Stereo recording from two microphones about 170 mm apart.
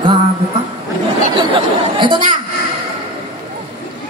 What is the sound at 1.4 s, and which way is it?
Speech, 30° right (ahead or behind).